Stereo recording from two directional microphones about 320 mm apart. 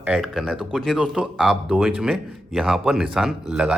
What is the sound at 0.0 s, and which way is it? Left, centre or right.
A man's voice, centre.